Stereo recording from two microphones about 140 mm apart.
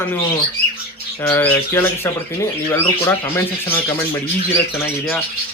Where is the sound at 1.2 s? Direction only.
15° left (ahead or behind).